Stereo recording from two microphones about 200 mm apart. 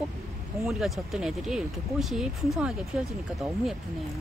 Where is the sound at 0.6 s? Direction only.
Centre (ahead or behind).